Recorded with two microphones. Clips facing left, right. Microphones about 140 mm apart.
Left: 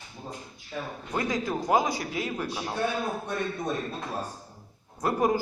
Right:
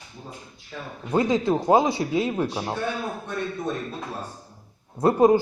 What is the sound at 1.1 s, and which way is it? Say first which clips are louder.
A man's voice: right 8 dB; 25° right (ahead or behind).